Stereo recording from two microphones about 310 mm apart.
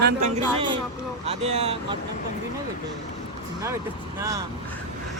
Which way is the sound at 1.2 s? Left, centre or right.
Centre.